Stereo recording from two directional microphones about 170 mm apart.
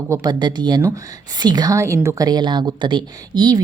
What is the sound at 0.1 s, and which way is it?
A woman's voice, 25° right (ahead or behind).